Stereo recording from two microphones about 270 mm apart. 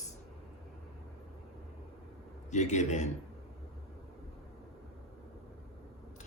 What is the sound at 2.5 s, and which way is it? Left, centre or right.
Speech, left.